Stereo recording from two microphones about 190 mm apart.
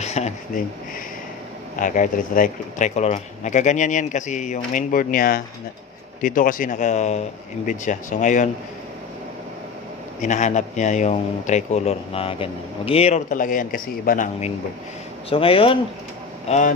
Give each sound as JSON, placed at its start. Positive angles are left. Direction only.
{"t": 0.0, "sound": "a sound", "side_deg": 35}
{"t": 1.8, "sound": "a man's voice", "side_deg": 45}
{"t": 10.2, "sound": "a man's voice", "side_deg": 40}
{"t": 15.2, "sound": "speech", "side_deg": 30}
{"t": 16.4, "sound": "a man's voice", "side_deg": 40}